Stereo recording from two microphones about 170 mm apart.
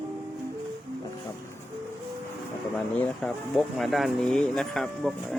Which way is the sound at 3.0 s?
Centre (ahead or behind).